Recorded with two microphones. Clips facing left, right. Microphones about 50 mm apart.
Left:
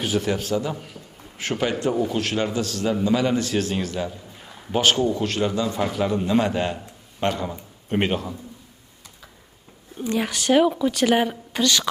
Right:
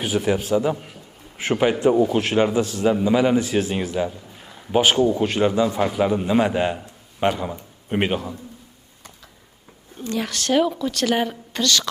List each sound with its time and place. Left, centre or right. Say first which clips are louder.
0.0 s a man's voice: right 2 dB; centre
10.0 s a woman's voice: left 1 dB; centre